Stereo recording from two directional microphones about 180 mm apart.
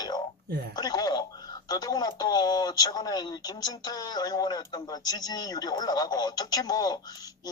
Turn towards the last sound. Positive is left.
turn(degrees=20)  # may be behind; listen again after turning